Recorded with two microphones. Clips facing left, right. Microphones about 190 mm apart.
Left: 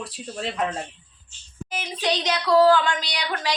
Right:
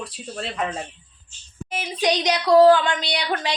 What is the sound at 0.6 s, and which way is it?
Speech, 5° right (ahead or behind).